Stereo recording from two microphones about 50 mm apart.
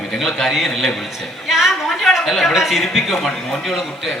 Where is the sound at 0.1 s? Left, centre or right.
Centre.